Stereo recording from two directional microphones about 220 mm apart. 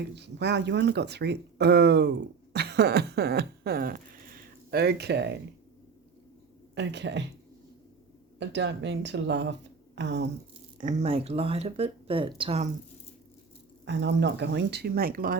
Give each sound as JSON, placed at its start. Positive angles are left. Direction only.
{"t": 0.2, "sound": "speech", "side_deg": -50}
{"t": 2.5, "sound": "a sound", "side_deg": -50}
{"t": 6.7, "sound": "speech", "side_deg": -55}
{"t": 8.4, "sound": "speech", "side_deg": -55}
{"t": 10.8, "sound": "speech", "side_deg": -30}
{"t": 13.8, "sound": "speech", "side_deg": -50}